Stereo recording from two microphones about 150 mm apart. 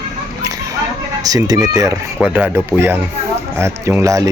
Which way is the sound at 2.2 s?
15° right (ahead or behind).